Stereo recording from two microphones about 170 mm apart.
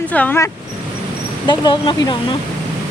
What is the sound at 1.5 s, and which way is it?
Speech, 25° left (ahead or behind).